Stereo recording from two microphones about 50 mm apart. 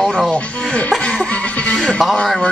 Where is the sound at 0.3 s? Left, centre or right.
Left.